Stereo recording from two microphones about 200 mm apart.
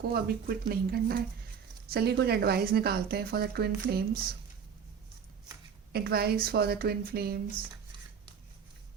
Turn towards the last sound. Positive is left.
turn(degrees=-50)  # may be behind; listen again after turning